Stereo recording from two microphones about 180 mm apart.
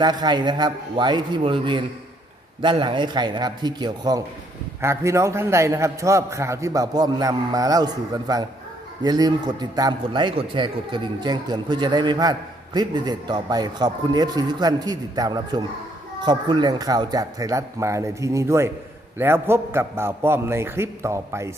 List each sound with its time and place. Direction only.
0.0 s a man's voice: 25° right (ahead or behind)